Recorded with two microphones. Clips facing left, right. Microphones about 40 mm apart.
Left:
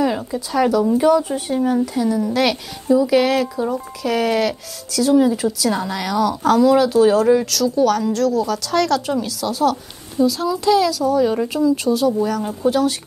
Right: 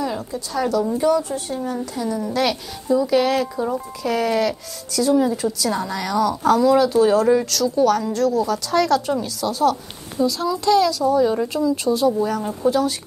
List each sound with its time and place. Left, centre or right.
0.7 s speech: centre
1.1 s speech: left
1.8 s a woman's voice: centre
5.1 s a woman's voice: centre
11.2 s speech: centre
11.5 s a woman's voice: centre